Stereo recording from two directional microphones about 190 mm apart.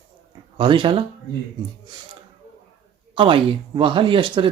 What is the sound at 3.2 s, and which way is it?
Speech, 25° right (ahead or behind).